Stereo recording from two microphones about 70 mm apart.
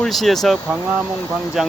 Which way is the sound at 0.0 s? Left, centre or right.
Centre.